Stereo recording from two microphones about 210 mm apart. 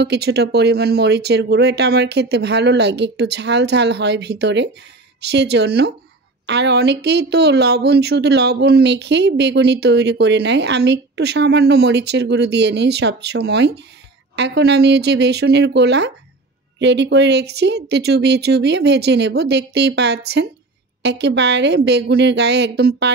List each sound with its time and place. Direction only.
0.0 s speech: 50° right (ahead or behind)